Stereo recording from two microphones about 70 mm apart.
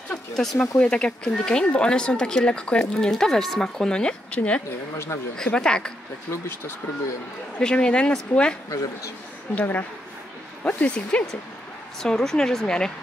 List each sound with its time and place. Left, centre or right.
0.1 s speech: centre
0.6 s speech: centre
4.9 s speech: left
5.3 s speech: centre
7.5 s speech: centre
8.6 s speech: left
9.6 s speech: left
12.0 s speech: centre